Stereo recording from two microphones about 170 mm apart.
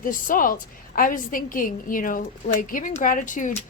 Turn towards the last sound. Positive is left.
turn(degrees=50)  # may be behind; listen again after turning